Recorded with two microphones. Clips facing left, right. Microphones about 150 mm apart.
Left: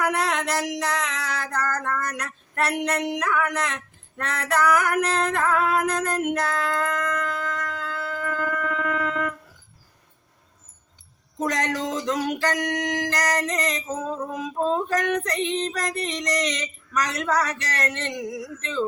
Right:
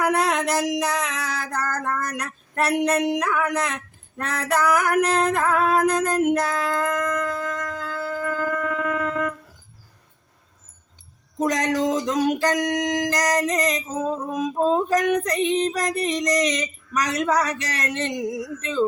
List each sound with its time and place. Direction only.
0.0 s music: 10° right (ahead or behind)
0.8 s a sound: 10° right (ahead or behind)
2.0 s speech: 5° right (ahead or behind)
3.1 s female singing: 10° right (ahead or behind)
6.3 s a sound: 10° right (ahead or behind)
11.3 s female singing: 10° right (ahead or behind)